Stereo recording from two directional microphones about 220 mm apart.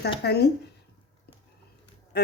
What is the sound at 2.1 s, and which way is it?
Speech, 45° left (ahead or behind).